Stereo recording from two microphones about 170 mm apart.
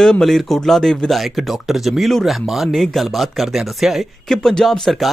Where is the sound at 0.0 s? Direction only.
5° left (ahead or behind).